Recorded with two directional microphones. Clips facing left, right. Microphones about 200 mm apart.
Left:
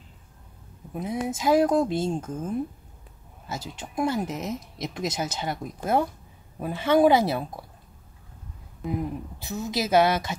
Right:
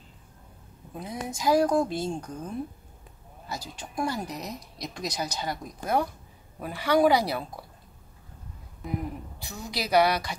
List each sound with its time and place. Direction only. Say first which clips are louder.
0.9 s speech: left 6 dB; 20° left (ahead or behind)
9.4 s speech: left 6 dB; 20° left (ahead or behind)